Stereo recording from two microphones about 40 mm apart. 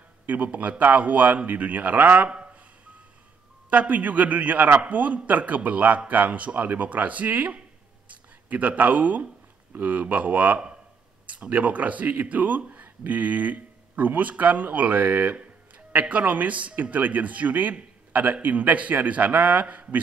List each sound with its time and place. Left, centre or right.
0.3 s a man's voice: right
2.2 s a sound: right
3.7 s a man's voice: right